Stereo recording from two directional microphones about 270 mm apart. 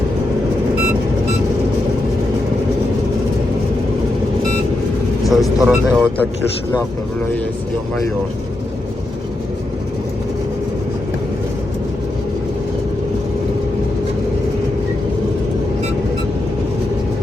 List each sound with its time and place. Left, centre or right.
5.2 s speech: centre